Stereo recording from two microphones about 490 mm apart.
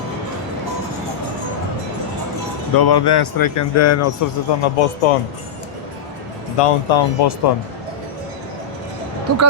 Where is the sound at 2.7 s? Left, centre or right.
Left.